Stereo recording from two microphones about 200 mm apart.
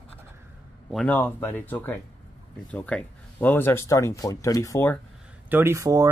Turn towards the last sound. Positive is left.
turn(degrees=-15)  # may be behind; listen again after turning